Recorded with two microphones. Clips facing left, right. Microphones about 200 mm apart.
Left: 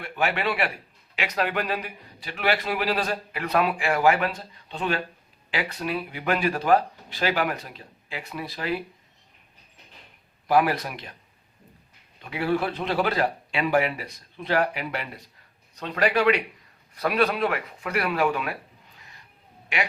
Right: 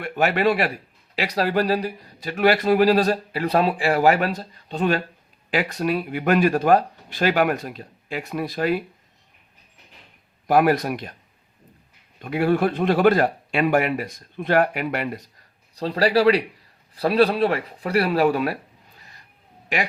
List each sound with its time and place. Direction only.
0.0 s a man's voice: 40° right (ahead or behind)
10.4 s speech: 45° right (ahead or behind)
12.2 s a man's voice: 50° right (ahead or behind)
18.9 s vehicle: 35° right (ahead or behind)
19.6 s speech: 40° right (ahead or behind)